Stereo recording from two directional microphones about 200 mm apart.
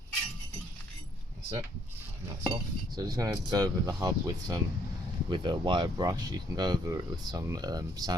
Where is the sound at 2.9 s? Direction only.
20° right (ahead or behind).